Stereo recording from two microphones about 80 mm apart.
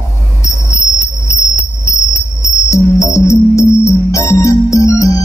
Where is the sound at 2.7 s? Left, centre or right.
Left.